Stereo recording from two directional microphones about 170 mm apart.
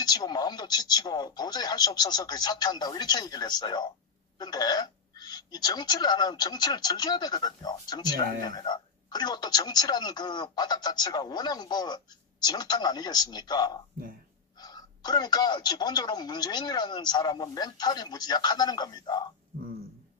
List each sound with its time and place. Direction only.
0.0 s speech: 25° left (ahead or behind)